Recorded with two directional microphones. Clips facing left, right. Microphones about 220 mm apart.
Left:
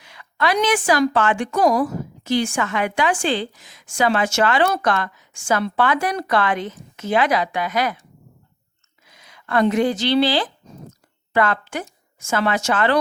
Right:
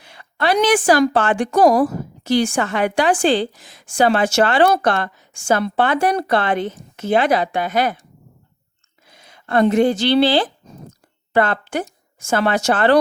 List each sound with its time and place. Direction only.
0.0 s a sound: 30° right (ahead or behind)
1.1 s a woman's voice: 30° right (ahead or behind)
1.6 s speech: 50° right (ahead or behind)
2.2 s a woman's voice: 35° right (ahead or behind)
9.0 s a sound: 30° right (ahead or behind)
9.7 s a woman's voice: 30° right (ahead or behind)